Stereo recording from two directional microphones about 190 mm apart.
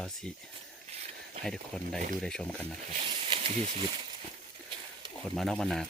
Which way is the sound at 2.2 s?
5° left (ahead or behind).